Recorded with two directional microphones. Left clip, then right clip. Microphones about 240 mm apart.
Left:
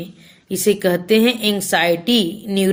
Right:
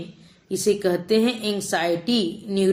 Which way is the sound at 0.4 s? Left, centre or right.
Left.